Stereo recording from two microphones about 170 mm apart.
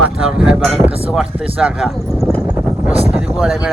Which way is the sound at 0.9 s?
35° right (ahead or behind).